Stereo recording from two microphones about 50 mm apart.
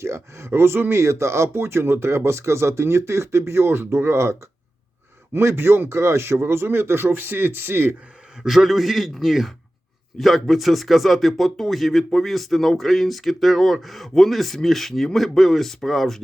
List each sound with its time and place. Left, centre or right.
0.0 s speech: right
8.4 s a man's voice: centre